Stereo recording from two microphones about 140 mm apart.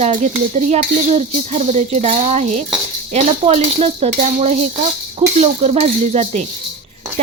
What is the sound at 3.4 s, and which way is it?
Speech, 45° right (ahead or behind).